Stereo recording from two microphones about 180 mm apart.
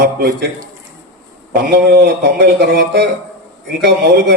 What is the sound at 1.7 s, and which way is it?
A man's voice, 60° right (ahead or behind).